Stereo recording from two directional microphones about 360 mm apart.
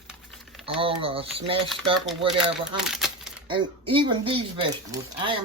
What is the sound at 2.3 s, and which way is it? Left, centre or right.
Speech, centre.